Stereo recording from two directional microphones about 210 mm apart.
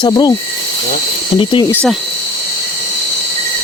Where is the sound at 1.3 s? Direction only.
25° left (ahead or behind).